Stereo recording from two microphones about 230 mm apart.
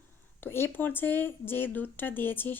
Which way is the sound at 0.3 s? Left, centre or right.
Centre.